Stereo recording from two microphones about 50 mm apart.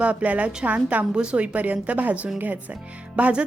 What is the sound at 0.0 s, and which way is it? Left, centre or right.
A woman's voice, right.